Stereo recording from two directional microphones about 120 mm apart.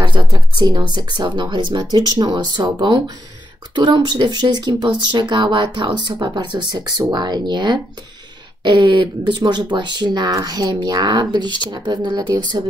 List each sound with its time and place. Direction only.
0.0 s speech: 40° right (ahead or behind)